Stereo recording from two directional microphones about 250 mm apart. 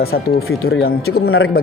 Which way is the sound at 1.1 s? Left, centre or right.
Left.